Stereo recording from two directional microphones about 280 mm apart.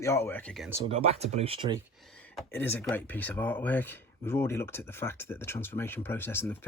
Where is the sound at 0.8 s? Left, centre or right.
Right.